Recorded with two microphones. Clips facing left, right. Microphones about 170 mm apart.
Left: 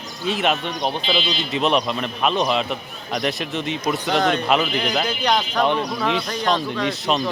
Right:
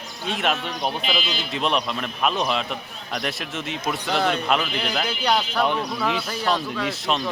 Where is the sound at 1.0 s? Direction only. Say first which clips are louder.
Left 3 dB; 30° left (ahead or behind).